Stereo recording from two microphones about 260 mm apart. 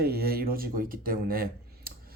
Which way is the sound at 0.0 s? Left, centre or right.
Right.